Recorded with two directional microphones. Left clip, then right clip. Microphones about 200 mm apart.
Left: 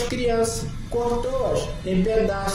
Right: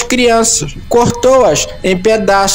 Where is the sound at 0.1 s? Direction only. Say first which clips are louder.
Right 16 dB; 45° right (ahead or behind).